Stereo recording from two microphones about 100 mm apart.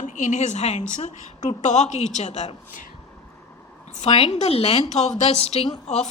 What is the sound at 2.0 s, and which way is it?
Speech, 90° left.